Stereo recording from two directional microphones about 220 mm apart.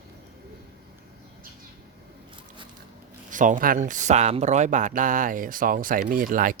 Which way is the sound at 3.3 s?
35° right (ahead or behind).